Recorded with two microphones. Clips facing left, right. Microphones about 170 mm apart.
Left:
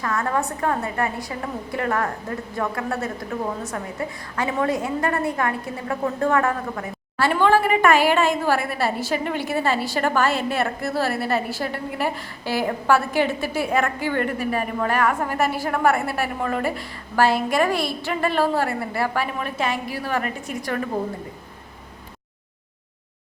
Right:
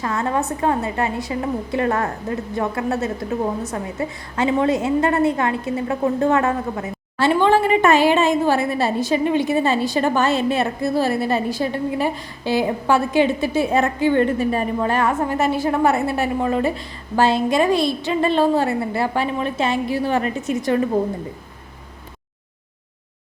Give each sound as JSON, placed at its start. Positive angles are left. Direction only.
{"t": 0.0, "sound": "a woman's voice", "side_deg": -25}